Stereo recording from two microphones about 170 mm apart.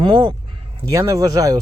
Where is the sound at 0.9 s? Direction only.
20° right (ahead or behind).